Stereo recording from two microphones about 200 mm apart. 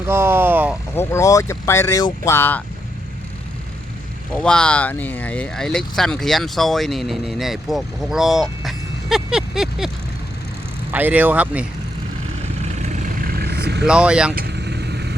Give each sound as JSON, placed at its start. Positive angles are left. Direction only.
{"t": 0.1, "sound": "speech", "side_deg": -10}
{"t": 0.9, "sound": "speech", "side_deg": 15}
{"t": 4.3, "sound": "speech", "side_deg": 5}
{"t": 10.9, "sound": "speech", "side_deg": -10}
{"t": 12.6, "sound": "vehicle", "side_deg": -40}
{"t": 13.8, "sound": "speech", "side_deg": -5}
{"t": 14.3, "sound": "vehicle", "side_deg": -55}